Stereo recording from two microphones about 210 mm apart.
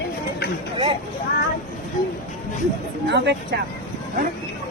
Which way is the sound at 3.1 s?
55° right (ahead or behind).